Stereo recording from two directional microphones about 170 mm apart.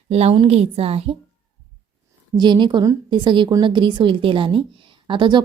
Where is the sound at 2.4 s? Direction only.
25° right (ahead or behind).